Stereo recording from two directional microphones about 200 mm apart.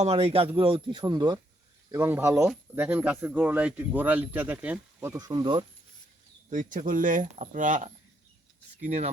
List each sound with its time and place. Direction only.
0.0 s a man's voice: 30° right (ahead or behind)
6.5 s speech: 40° right (ahead or behind)